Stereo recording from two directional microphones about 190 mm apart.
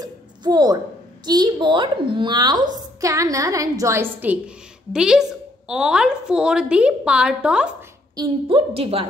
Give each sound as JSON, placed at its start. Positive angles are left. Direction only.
{"t": 0.0, "sound": "a sound", "side_deg": -20}
{"t": 1.2, "sound": "a woman's voice", "side_deg": -20}
{"t": 8.2, "sound": "a woman's voice", "side_deg": -30}